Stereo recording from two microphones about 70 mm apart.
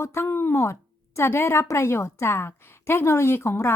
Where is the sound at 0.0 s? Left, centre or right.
Left.